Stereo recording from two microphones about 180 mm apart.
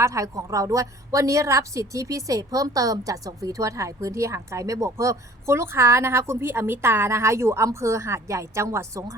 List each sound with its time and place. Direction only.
0.0 s a woman's voice: 15° right (ahead or behind)